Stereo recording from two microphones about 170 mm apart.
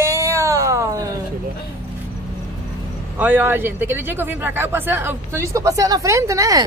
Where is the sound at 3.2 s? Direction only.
10° right (ahead or behind).